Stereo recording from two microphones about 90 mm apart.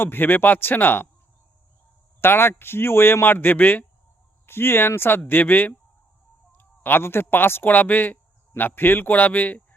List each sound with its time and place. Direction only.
0.0 s speech: 25° left (ahead or behind)
2.2 s speech: 25° left (ahead or behind)